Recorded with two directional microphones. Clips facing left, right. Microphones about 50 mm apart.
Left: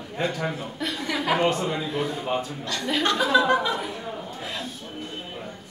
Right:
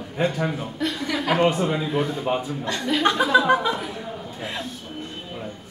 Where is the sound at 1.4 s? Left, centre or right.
Centre.